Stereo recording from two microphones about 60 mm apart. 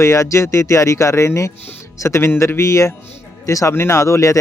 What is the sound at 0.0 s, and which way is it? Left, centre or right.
Speech, left.